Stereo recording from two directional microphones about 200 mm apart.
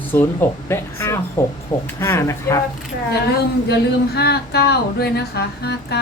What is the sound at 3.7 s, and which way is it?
Speech, 55° left (ahead or behind).